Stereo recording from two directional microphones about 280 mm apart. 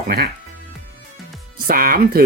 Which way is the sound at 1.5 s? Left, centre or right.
Right.